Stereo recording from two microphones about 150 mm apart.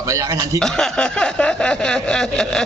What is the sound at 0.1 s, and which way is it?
Speech, 20° right (ahead or behind).